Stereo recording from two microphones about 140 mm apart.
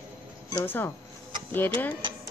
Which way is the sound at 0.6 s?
15° left (ahead or behind).